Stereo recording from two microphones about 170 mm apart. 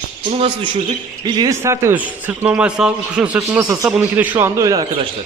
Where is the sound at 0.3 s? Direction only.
30° right (ahead or behind).